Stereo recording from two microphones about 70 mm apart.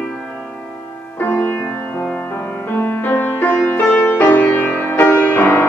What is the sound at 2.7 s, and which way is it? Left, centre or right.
Music, left.